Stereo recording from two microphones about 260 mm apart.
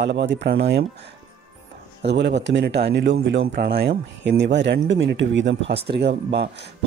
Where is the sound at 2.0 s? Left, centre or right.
Right.